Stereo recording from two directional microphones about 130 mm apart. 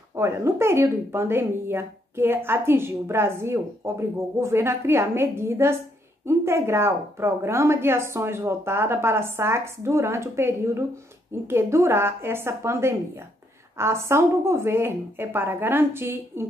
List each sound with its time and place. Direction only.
0.1 s a woman's voice: 20° right (ahead or behind)